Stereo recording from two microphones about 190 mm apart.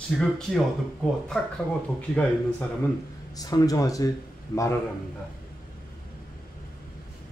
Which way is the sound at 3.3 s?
20° left (ahead or behind).